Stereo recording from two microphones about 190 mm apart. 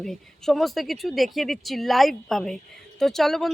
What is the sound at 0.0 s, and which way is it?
Speech, centre (ahead or behind).